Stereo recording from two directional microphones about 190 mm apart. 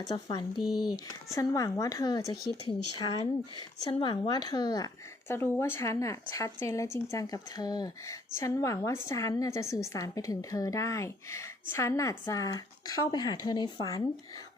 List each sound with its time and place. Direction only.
0.1 s a woman's voice: 20° left (ahead or behind)